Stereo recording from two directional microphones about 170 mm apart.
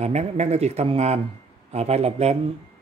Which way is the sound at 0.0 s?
40° right (ahead or behind).